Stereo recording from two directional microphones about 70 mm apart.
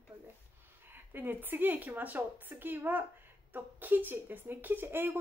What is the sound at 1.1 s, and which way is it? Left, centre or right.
A woman's voice, right.